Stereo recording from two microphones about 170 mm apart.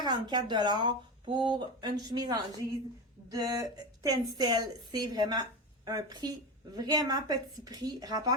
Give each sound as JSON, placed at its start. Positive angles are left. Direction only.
{"t": 0.0, "sound": "a woman's voice", "side_deg": -25}